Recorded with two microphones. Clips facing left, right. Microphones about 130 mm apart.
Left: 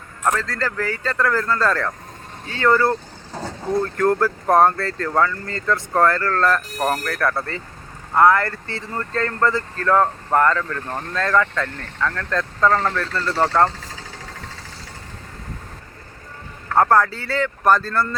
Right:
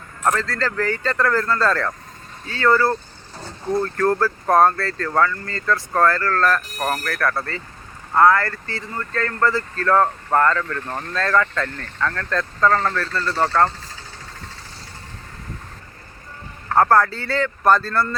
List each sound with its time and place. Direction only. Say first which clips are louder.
0.3 s speech: right 1 dB; 15° left (ahead or behind)
3.3 s mechanisms: left 7 dB; 90° left
3.9 s speech: left 2 dB; 20° left (ahead or behind)
16.7 s speech: even; 15° left (ahead or behind)